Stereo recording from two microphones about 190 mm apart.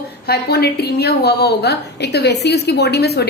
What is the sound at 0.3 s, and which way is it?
A woman's voice, 60° left (ahead or behind).